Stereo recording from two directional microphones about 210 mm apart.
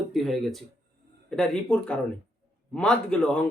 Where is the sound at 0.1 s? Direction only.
Centre (ahead or behind).